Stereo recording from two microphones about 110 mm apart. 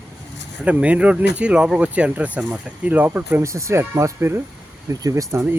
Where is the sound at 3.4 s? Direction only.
25° right (ahead or behind).